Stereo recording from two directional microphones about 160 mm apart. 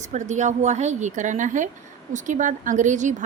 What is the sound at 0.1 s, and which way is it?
Speech, 50° right (ahead or behind).